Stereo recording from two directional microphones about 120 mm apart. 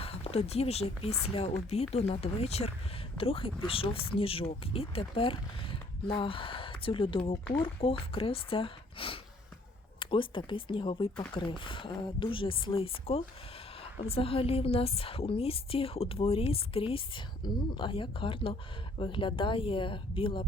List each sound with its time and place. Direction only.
0.0 s speech: 55° left (ahead or behind)
3.2 s a woman's voice: 50° left (ahead or behind)